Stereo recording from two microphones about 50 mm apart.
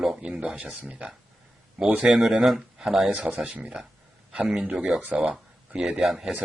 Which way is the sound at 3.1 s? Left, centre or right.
Right.